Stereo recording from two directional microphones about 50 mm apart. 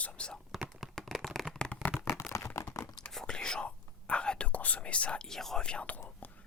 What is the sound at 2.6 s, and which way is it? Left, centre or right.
Tearing, left.